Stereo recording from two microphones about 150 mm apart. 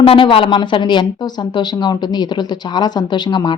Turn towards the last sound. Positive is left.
turn(degrees=30)  # may be behind; listen again after turning